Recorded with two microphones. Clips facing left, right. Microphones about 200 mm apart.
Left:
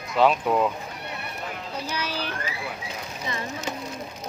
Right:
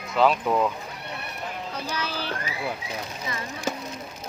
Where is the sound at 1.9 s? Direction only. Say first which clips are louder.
Left 1 dB; 15° left (ahead or behind).